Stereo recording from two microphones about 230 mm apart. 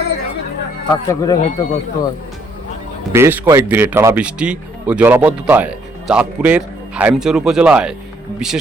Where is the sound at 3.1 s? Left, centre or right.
Centre.